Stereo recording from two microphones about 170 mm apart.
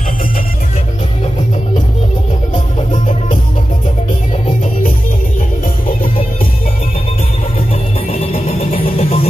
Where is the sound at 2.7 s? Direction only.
45° left (ahead or behind).